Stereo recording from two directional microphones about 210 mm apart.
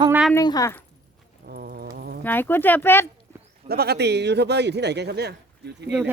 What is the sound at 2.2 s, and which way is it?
Speech, 10° left (ahead or behind).